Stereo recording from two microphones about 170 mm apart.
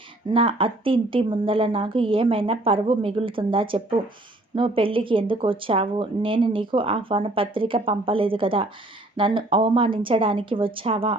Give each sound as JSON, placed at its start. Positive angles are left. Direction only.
{"t": 0.3, "sound": "speech", "side_deg": -30}